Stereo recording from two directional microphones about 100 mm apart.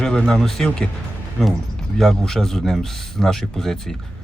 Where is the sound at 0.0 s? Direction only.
5° left (ahead or behind).